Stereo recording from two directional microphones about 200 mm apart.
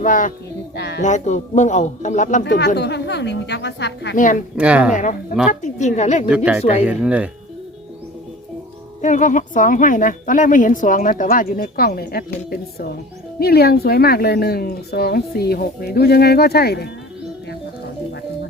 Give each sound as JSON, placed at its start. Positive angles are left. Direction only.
{"t": 0.0, "sound": "speech", "side_deg": 40}
{"t": 0.8, "sound": "a woman's voice", "side_deg": 55}
{"t": 1.0, "sound": "speech", "side_deg": 35}
{"t": 2.4, "sound": "a woman's voice", "side_deg": 60}
{"t": 4.1, "sound": "speech", "side_deg": 40}
{"t": 4.5, "sound": "a woman's voice", "side_deg": -5}
{"t": 5.6, "sound": "speech", "side_deg": 35}
{"t": 6.2, "sound": "a woman's voice", "side_deg": -5}
{"t": 6.6, "sound": "speech", "side_deg": 30}
{"t": 6.8, "sound": "a woman's voice", "side_deg": -5}
{"t": 9.0, "sound": "a woman's voice", "side_deg": 40}